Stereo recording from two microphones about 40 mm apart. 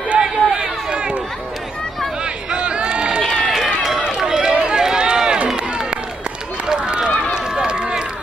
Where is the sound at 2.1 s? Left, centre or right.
Right.